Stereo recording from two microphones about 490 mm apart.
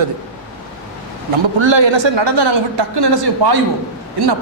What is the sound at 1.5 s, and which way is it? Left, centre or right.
A woman's voice, right.